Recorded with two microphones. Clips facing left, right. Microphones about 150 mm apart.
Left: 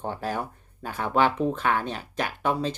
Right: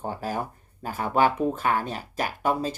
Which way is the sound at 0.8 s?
40° right (ahead or behind).